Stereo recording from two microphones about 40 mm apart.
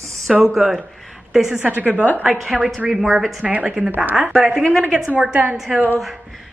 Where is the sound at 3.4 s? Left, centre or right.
Right.